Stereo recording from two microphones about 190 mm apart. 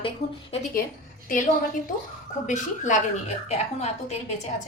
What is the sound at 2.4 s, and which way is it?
A woman's voice, 40° left (ahead or behind).